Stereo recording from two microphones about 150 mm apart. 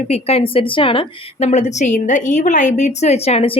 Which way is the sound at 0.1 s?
40° left (ahead or behind).